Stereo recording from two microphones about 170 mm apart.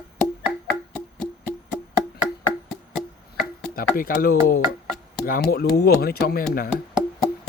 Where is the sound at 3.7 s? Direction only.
60° left (ahead or behind).